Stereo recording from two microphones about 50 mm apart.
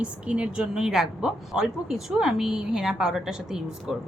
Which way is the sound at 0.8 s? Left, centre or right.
Centre.